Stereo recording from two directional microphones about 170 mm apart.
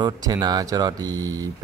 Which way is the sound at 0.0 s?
25° right (ahead or behind).